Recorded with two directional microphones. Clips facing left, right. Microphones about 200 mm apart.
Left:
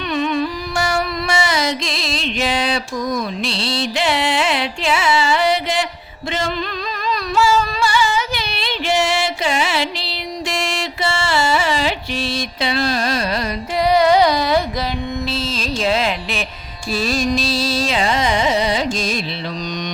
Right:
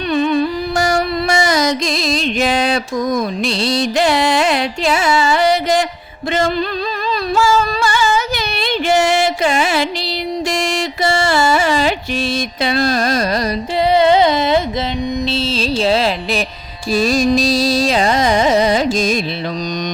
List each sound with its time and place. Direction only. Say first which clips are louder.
0.1 s carnatic music: right 5 dB; 35° right (ahead or behind)
7.3 s a sound: right 1 dB; 45° right (ahead or behind)
10.5 s carnatic music: right 5 dB; 40° right (ahead or behind)
13.7 s carnatic music: right 1 dB; 25° right (ahead or behind); by 19.2 s 45° right (ahead or behind)